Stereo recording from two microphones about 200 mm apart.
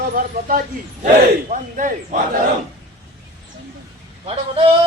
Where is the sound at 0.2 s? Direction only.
45° right (ahead or behind).